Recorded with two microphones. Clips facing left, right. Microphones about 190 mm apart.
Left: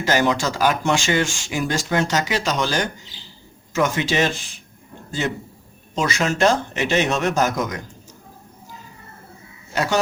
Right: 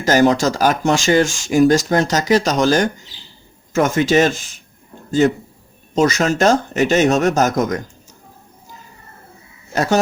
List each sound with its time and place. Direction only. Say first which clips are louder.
0.0 s speech: right 6 dB; 40° right (ahead or behind)
9.7 s speech: right 4 dB; 45° right (ahead or behind)